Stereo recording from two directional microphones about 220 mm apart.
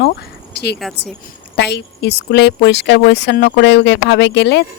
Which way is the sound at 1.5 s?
50° left (ahead or behind).